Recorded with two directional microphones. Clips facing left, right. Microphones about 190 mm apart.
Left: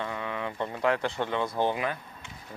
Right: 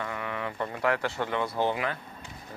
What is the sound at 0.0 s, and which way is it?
Speech, 20° left (ahead or behind).